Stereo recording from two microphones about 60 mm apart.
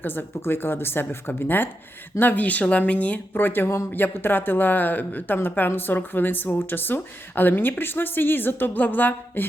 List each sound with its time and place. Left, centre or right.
0.0 s speech: left
3.3 s speech: left